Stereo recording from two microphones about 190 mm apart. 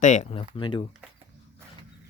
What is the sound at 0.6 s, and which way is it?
Speech, 25° left (ahead or behind).